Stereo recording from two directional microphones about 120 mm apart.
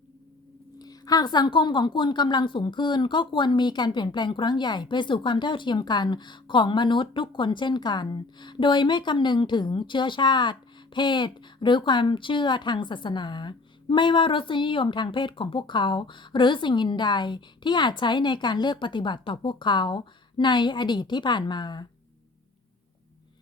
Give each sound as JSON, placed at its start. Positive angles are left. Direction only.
{"t": 0.8, "sound": "a woman's voice", "side_deg": 35}